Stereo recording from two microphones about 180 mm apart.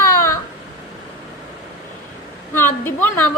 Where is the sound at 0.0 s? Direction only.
15° left (ahead or behind).